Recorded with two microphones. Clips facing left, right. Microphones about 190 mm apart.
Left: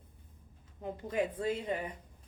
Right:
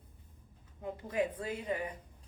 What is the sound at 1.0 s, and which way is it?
Speech, 25° left (ahead or behind).